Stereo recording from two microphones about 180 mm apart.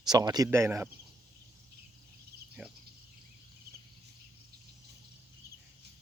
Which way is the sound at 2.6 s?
5° right (ahead or behind).